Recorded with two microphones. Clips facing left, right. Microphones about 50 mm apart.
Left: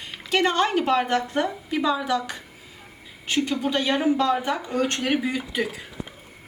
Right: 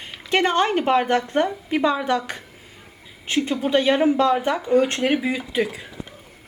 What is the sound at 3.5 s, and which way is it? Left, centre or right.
A woman's voice, right.